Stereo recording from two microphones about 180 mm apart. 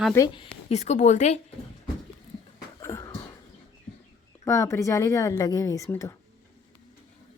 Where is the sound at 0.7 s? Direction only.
40° left (ahead or behind).